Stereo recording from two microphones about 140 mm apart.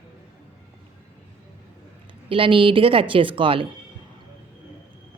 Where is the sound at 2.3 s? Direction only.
40° right (ahead or behind).